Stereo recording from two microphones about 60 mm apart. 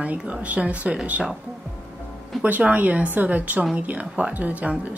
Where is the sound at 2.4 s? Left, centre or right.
Right.